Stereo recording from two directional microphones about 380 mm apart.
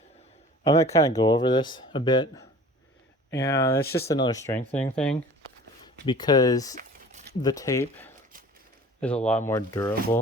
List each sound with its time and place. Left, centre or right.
0.6 s speech: centre
6.7 s a sound: centre
7.4 s speech: centre